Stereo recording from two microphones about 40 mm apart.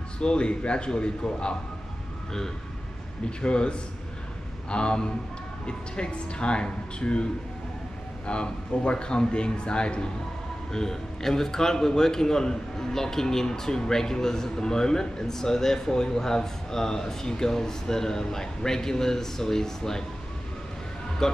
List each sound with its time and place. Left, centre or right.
0.2 s speech: left
3.3 s speech: left
8.3 s speech: left
10.7 s a man's voice: centre
21.2 s a man's voice: centre